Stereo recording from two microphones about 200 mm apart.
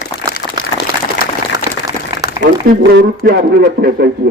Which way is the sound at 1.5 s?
15° right (ahead or behind).